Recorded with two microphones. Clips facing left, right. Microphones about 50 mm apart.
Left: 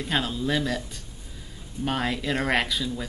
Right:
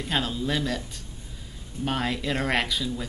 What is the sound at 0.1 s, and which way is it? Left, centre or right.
Speech, centre.